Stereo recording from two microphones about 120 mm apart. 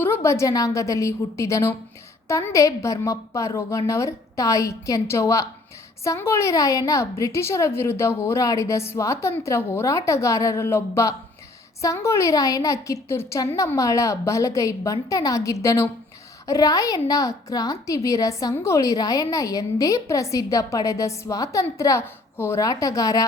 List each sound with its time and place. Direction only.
0.0 s a woman's voice: 20° left (ahead or behind)